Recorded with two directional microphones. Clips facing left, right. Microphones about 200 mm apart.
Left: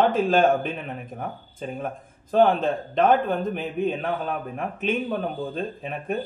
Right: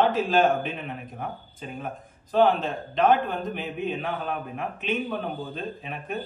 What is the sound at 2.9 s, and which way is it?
A man's voice, 50° left (ahead or behind).